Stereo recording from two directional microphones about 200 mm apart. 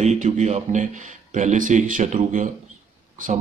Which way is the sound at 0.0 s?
35° right (ahead or behind).